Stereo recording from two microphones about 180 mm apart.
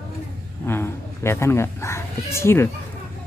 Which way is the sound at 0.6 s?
15° left (ahead or behind).